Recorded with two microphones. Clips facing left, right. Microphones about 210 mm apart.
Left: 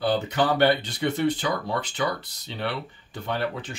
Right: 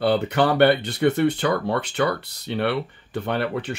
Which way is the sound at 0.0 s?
60° right (ahead or behind).